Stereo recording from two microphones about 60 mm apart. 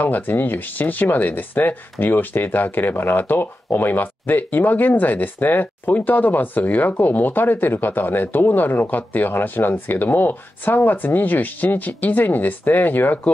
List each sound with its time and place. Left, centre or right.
0.0 s speech: left